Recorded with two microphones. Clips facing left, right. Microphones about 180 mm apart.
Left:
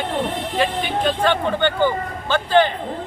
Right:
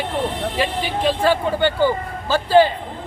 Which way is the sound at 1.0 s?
10° right (ahead or behind).